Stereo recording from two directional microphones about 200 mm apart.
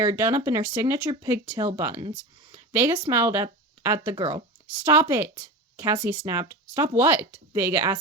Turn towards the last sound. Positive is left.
turn(degrees=-10)  # may be behind; listen again after turning